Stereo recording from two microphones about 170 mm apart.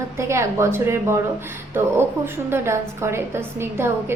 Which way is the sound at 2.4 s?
15° right (ahead or behind).